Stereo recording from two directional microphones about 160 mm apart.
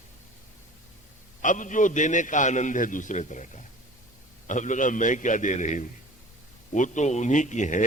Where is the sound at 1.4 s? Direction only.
50° left (ahead or behind).